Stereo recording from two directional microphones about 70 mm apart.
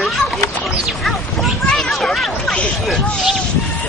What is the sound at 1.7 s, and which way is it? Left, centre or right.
Speech, centre.